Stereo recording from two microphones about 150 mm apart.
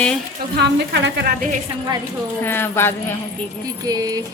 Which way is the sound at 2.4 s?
15° left (ahead or behind).